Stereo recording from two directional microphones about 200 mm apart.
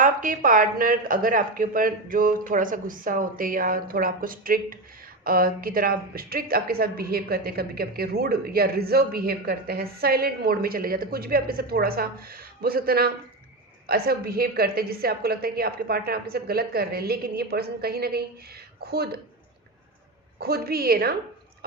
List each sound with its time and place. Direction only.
0.0 s a woman's voice: 40° right (ahead or behind)
20.4 s a woman's voice: 50° right (ahead or behind)